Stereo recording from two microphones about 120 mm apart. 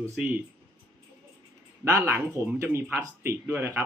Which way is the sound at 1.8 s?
25° right (ahead or behind).